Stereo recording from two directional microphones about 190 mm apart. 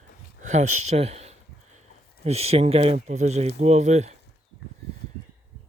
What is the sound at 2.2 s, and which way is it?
Speech, 35° right (ahead or behind).